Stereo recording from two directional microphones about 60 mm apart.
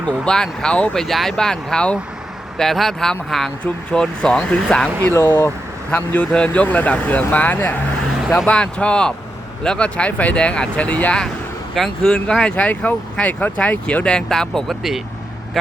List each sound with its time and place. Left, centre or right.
0.0 s speech: centre
0.9 s speech: centre
5.1 s speech: left
5.9 s speech: left
8.4 s speech: centre
11.7 s speech: centre
12.5 s speech: left; by 15.0 s centre